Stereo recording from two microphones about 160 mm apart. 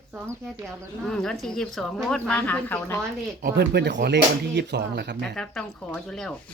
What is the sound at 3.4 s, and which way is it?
Speech, 90° right.